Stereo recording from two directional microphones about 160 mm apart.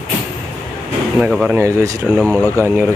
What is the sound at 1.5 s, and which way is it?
Speech, 20° right (ahead or behind).